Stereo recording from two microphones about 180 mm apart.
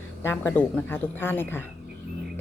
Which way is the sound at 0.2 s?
15° left (ahead or behind).